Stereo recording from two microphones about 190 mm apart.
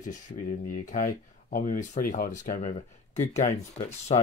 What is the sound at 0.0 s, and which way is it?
Speech, 40° left (ahead or behind).